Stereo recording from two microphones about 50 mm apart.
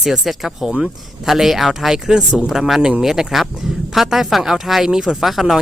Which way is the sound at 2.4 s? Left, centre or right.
Centre.